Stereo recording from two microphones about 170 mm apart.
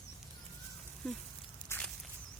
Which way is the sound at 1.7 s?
15° left (ahead or behind).